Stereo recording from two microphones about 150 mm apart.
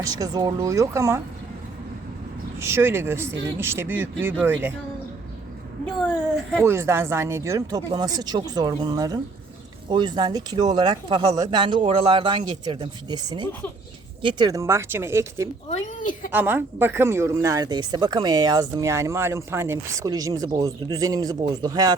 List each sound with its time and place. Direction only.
0.0 s speech: 25° right (ahead or behind)
2.6 s speech: 15° right (ahead or behind)
6.7 s a man's voice: 15° right (ahead or behind)
15.7 s speech: 60° left (ahead or behind)
16.3 s speech: 15° right (ahead or behind)